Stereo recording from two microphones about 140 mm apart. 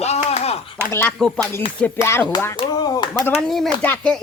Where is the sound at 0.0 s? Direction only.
50° left (ahead or behind).